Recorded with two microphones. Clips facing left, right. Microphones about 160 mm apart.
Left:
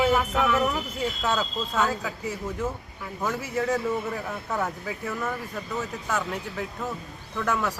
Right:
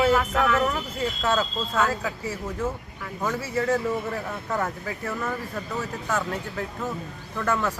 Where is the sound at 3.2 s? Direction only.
5° left (ahead or behind).